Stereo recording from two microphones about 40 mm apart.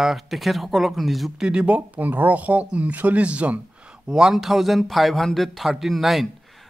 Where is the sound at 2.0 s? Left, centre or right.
Right.